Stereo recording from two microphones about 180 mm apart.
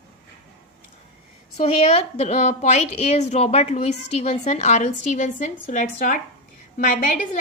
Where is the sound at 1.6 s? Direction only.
35° left (ahead or behind).